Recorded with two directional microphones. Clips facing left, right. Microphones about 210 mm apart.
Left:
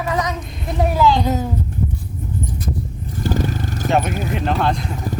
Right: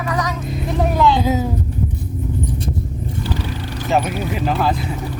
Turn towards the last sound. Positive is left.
turn(degrees=-5)  # may be behind; listen again after turning